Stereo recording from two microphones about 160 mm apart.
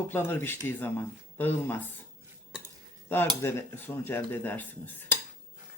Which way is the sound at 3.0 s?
10° left (ahead or behind).